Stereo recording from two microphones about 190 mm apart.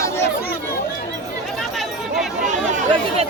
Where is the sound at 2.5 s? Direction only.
40° right (ahead or behind).